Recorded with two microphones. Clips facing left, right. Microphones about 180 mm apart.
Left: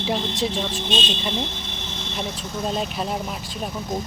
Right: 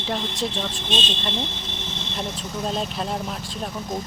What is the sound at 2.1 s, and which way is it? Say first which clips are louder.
Speech: left 1 dB; centre (ahead or behind).